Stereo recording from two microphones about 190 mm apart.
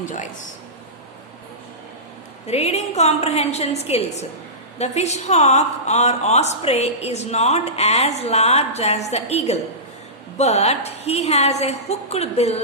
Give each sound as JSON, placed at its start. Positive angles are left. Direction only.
{"t": 0.0, "sound": "speech", "side_deg": 40}
{"t": 2.5, "sound": "a woman's voice", "side_deg": 35}